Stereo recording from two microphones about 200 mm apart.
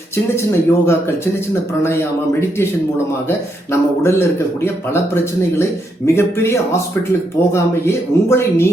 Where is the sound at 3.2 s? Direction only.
10° left (ahead or behind).